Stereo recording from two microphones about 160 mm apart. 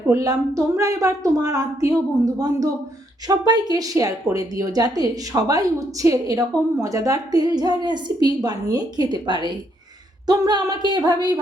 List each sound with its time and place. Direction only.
0.1 s a woman's voice: 20° right (ahead or behind)